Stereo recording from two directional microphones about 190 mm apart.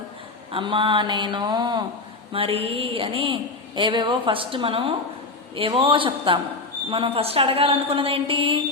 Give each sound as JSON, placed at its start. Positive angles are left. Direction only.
{"t": 0.5, "sound": "a woman's voice", "side_deg": -25}